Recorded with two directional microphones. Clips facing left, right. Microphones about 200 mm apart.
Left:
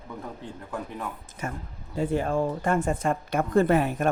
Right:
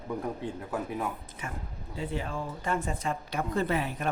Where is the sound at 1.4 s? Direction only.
45° left (ahead or behind).